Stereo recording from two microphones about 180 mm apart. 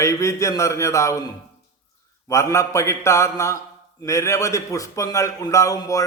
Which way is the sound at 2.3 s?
15° left (ahead or behind).